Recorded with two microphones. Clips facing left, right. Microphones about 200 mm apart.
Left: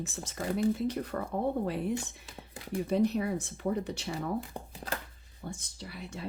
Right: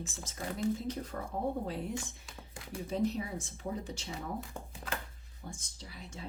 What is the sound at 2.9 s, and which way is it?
Speech, 65° left (ahead or behind).